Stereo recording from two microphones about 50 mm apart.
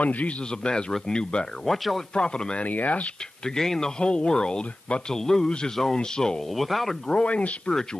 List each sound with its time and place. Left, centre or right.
0.0 s speech: left
0.5 s speech: centre
1.7 s speech: centre
2.1 s speech: centre
2.6 s speech: left
3.4 s speech: centre
6.5 s speech: centre
7.2 s speech: left